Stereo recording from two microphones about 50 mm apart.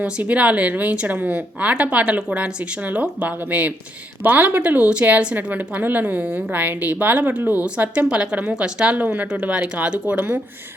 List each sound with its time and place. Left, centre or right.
0.0 s a woman's voice: right
6.2 s a woman's voice: right
6.5 s a woman's voice: right